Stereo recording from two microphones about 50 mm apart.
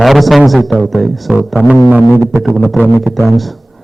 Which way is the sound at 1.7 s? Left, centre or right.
Right.